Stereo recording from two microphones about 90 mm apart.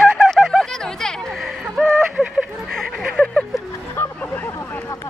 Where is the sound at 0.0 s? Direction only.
Centre (ahead or behind).